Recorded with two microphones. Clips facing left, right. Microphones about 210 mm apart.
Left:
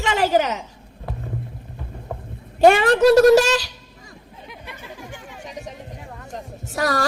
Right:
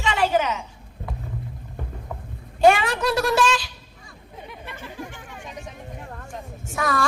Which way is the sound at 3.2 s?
45° left (ahead or behind).